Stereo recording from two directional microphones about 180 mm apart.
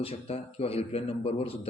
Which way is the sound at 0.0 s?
30° left (ahead or behind).